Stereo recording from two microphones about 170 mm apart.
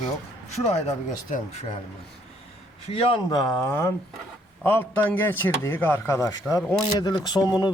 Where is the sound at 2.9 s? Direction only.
30° left (ahead or behind).